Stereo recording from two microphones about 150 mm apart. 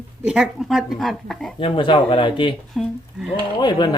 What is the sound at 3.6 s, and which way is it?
Speech, 30° left (ahead or behind).